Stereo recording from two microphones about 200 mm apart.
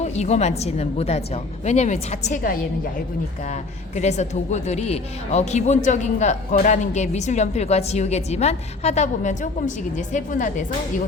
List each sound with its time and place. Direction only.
0.0 s a woman's voice: 35° left (ahead or behind)